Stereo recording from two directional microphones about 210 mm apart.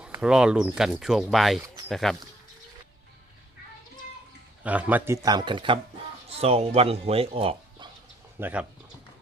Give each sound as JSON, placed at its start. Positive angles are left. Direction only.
{"t": 0.0, "sound": "speech", "side_deg": -5}
{"t": 4.6, "sound": "speech", "side_deg": -5}
{"t": 8.4, "sound": "speech", "side_deg": -10}